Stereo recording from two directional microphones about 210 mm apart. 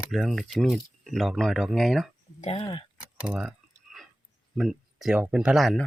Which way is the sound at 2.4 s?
25° left (ahead or behind).